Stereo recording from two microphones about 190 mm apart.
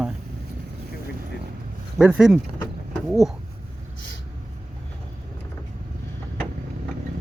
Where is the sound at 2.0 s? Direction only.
5° right (ahead or behind).